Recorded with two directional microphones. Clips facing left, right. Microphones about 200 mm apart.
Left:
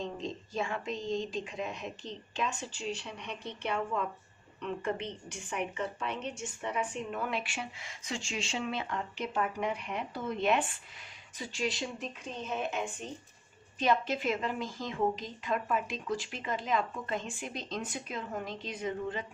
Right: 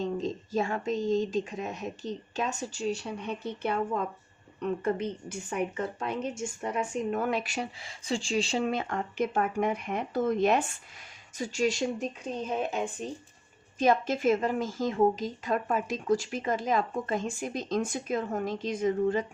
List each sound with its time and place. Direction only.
0.0 s a woman's voice: 40° right (ahead or behind)